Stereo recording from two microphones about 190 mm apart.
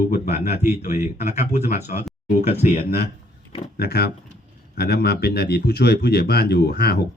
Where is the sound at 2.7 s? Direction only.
55° left (ahead or behind).